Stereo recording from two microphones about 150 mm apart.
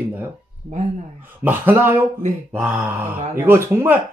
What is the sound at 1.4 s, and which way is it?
Speech, 15° right (ahead or behind).